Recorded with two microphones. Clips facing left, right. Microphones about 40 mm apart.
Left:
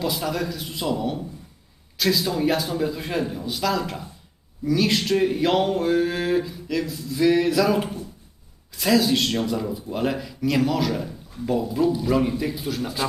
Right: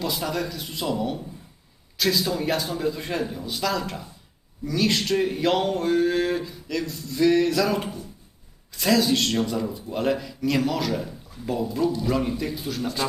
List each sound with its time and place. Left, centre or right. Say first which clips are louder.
0.0 s speech: left 2 dB; centre